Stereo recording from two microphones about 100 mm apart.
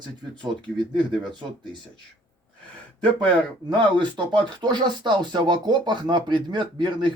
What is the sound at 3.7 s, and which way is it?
Speech, 50° right (ahead or behind).